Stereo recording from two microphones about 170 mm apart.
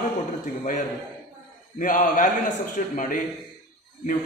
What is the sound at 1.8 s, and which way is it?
A man's voice, 50° left (ahead or behind).